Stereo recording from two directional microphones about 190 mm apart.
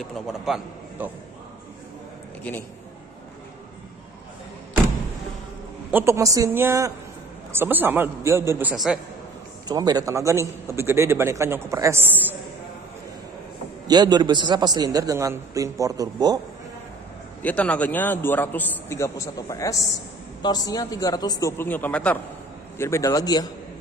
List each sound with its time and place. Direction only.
0.0 s a man's voice: centre (ahead or behind)
5.9 s a man's voice: 10° right (ahead or behind)
9.7 s a man's voice: 20° right (ahead or behind)
13.8 s a man's voice: 20° right (ahead or behind)
17.4 s a man's voice: 10° left (ahead or behind)